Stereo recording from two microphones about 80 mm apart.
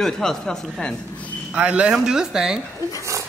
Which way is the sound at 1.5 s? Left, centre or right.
Centre.